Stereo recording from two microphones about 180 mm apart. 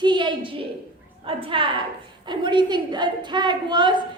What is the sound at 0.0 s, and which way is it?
A woman's voice, 25° right (ahead or behind).